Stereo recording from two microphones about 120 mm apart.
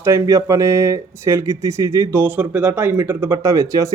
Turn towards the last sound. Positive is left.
turn(degrees=-25)  # may be behind; listen again after turning